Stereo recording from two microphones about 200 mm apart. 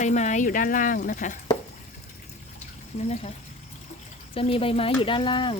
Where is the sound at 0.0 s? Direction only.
35° left (ahead or behind).